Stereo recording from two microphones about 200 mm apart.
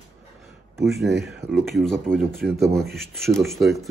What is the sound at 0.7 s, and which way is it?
Speech, centre (ahead or behind).